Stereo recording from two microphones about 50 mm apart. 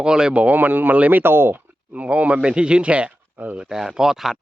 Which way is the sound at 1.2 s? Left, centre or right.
Right.